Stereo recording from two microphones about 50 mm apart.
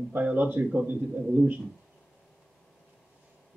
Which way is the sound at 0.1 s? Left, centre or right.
Right.